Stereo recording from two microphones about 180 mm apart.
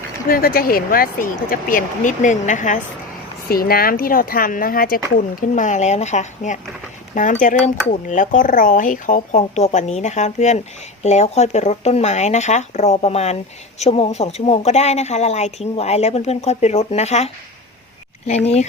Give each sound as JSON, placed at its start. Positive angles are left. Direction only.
{"t": 0.3, "sound": "speech", "side_deg": 55}
{"t": 3.5, "sound": "a woman's voice", "side_deg": 55}